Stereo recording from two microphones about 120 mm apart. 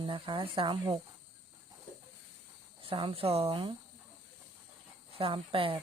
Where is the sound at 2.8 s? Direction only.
50° right (ahead or behind).